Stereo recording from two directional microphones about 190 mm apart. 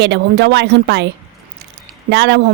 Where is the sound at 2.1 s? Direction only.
60° right (ahead or behind).